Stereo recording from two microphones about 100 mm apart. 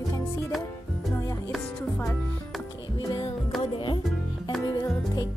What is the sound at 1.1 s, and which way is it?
Music, 30° left (ahead or behind).